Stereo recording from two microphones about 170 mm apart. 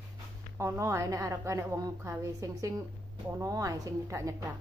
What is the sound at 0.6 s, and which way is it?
A woman's voice, 15° right (ahead or behind).